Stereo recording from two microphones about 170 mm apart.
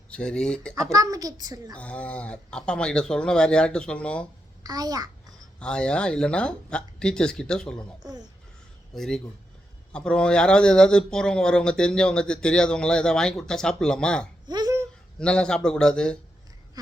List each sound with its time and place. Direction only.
0.1 s speech: 5° left (ahead or behind)
0.9 s a child's voice: 20° right (ahead or behind)
1.7 s speech: 10° left (ahead or behind)
4.6 s a child's voice: 20° right (ahead or behind)
5.5 s speech: 5° left (ahead or behind)
9.0 s speech: 5° left (ahead or behind)
14.4 s a sound: 25° right (ahead or behind)
15.2 s speech: 5° left (ahead or behind)
16.8 s a sound: 20° right (ahead or behind)